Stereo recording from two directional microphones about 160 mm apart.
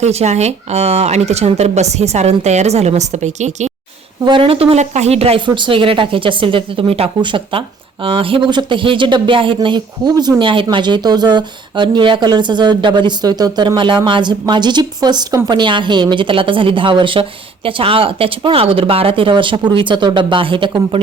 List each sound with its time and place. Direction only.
0.0 s speech: 45° right (ahead or behind)
4.3 s a woman's voice: 35° right (ahead or behind)